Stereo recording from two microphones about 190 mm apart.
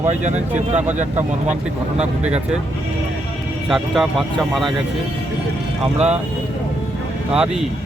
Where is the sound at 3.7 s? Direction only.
Centre (ahead or behind).